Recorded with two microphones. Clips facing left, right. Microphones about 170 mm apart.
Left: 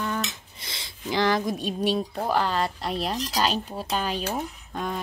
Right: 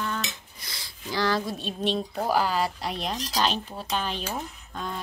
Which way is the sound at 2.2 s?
5° right (ahead or behind).